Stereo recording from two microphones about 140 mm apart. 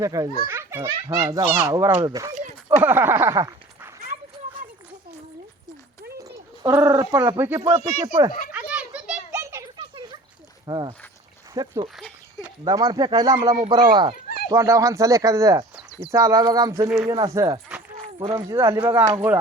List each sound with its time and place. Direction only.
0.0 s a child's voice: 25° right (ahead or behind)
0.4 s children playing: 15° right (ahead or behind)
0.9 s a child's voice: 25° right (ahead or behind)
2.6 s speech: 15° right (ahead or behind)
6.2 s a sound: 25° right (ahead or behind)
6.7 s a child's voice: 25° right (ahead or behind)
7.3 s speech: 15° right (ahead or behind)
7.6 s a child's voice: 25° right (ahead or behind)
8.5 s a sound: 10° right (ahead or behind)
9.7 s a sound: 35° right (ahead or behind)
10.7 s a child's voice: 35° right (ahead or behind)
14.5 s a child's voice: 20° right (ahead or behind); by 18.4 s 35° right (ahead or behind)
18.4 s speech: 25° right (ahead or behind)